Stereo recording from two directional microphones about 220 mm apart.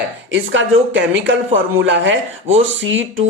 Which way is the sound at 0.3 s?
60° right (ahead or behind).